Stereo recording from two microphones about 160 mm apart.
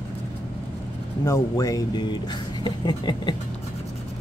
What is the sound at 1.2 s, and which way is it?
Speech, 20° left (ahead or behind).